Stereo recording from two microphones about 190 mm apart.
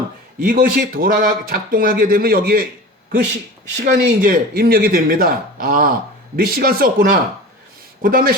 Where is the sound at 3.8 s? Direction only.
50° right (ahead or behind).